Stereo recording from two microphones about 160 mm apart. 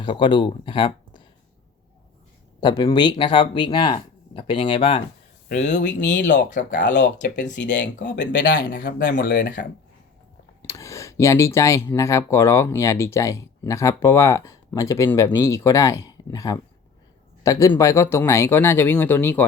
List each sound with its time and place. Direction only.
0.0 s speech: 30° left (ahead or behind)
2.6 s speech: 25° left (ahead or behind)
5.5 s speech: 50° left (ahead or behind)
6.1 s speech: 90° left
6.5 s speech: 55° left (ahead or behind)
6.7 s speech: 90° left
10.6 s speech: 20° left (ahead or behind)